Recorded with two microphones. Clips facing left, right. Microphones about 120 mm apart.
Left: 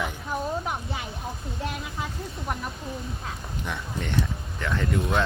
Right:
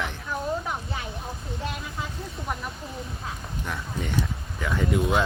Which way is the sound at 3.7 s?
5° right (ahead or behind).